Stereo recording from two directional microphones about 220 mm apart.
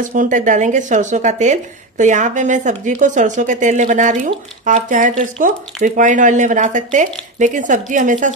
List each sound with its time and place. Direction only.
0.1 s speech: 35° right (ahead or behind)